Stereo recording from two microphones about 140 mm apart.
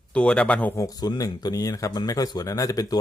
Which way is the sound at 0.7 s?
25° left (ahead or behind).